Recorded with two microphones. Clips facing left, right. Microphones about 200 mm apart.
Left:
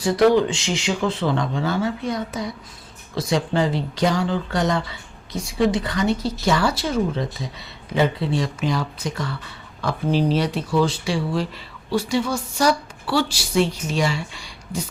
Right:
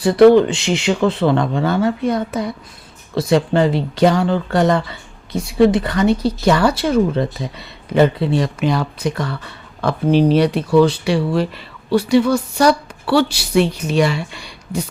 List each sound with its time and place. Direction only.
0.0 s speech: 60° right (ahead or behind)